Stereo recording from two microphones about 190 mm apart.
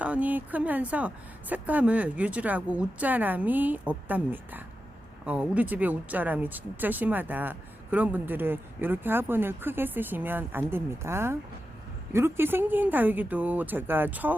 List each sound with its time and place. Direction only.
0.0 s speech: 10° right (ahead or behind)